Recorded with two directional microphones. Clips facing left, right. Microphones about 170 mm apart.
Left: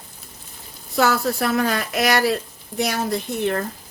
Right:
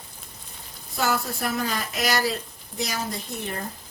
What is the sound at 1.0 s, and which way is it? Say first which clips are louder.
A woman's voice: left 7 dB; 75° left (ahead or behind).